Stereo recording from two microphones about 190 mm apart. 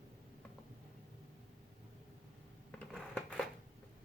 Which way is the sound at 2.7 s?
5° left (ahead or behind).